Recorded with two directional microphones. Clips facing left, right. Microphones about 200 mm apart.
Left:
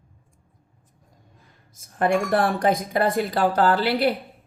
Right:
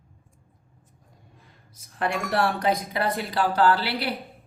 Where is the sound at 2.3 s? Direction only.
50° left (ahead or behind).